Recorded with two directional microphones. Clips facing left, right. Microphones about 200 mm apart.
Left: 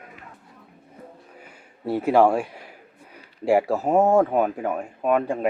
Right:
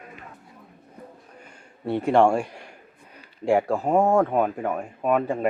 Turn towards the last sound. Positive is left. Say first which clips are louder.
# left 1 dB
turn(degrees=0)  # may be behind; listen again after turning